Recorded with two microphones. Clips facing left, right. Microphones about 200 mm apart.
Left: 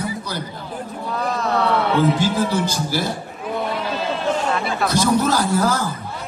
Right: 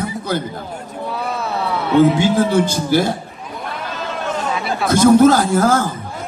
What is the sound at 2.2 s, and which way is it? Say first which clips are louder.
Speech: right 5 dB; 50° right (ahead or behind).